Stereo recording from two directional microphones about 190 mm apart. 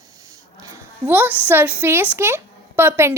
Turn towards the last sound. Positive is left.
turn(degrees=-10)  # may be behind; listen again after turning